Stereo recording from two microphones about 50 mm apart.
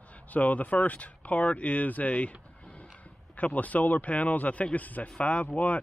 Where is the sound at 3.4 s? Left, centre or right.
Left.